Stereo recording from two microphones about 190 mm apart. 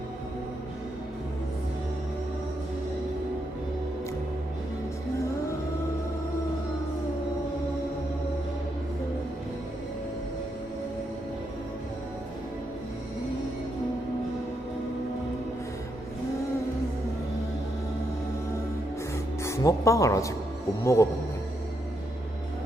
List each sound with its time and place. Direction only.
19.4 s speech: 15° left (ahead or behind)